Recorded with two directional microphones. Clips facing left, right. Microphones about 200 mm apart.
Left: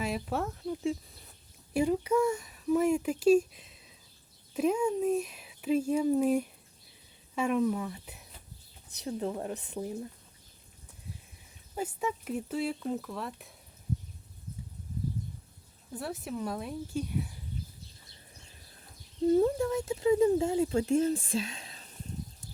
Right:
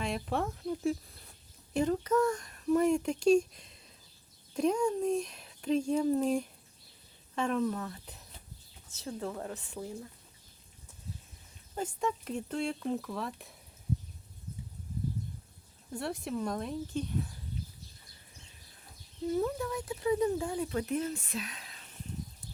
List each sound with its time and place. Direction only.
0.0 s speech: 5° left (ahead or behind); by 10.1 s 20° left (ahead or behind)
11.7 s speech: 5° left (ahead or behind)
15.9 s speech: 5° left (ahead or behind)
19.3 s speech: 30° left (ahead or behind)